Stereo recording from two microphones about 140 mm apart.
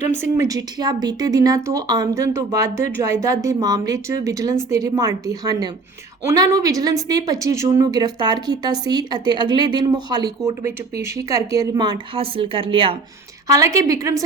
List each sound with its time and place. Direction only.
0.3 s speech: 25° right (ahead or behind)
13.5 s speech: 20° right (ahead or behind)